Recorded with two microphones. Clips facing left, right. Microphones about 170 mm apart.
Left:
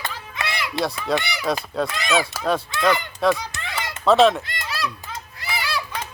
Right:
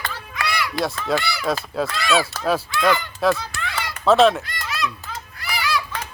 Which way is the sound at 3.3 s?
20° left (ahead or behind).